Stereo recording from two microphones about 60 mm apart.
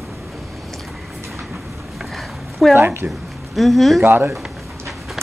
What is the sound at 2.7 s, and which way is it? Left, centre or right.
Speech, right.